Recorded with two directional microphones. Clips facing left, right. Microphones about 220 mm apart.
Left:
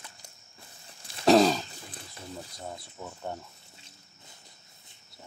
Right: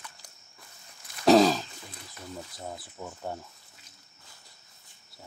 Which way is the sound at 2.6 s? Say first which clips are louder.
Right 1 dB; 5° right (ahead or behind).